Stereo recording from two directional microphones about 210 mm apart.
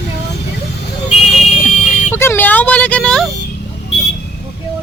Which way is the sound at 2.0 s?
10° left (ahead or behind).